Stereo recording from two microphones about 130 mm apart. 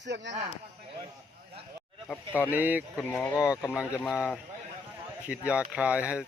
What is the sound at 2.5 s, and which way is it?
Speech, 15° right (ahead or behind).